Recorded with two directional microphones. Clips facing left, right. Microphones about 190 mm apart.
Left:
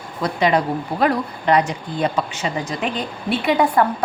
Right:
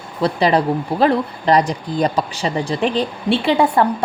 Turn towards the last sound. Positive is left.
turn(degrees=-30)  # may be behind; listen again after turning